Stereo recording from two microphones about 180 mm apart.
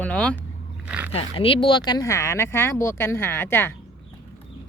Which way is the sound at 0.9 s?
10° right (ahead or behind).